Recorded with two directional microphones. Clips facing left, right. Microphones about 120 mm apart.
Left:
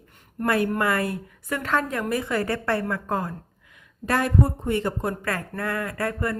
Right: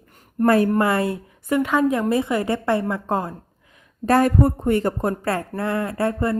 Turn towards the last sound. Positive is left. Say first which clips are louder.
# right 5 dB
turn(degrees=-25)  # may be behind; listen again after turning